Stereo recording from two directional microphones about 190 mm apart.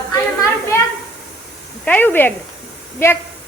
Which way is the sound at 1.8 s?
10° left (ahead or behind).